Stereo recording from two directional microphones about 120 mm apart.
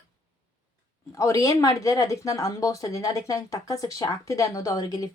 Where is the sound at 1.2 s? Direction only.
25° left (ahead or behind).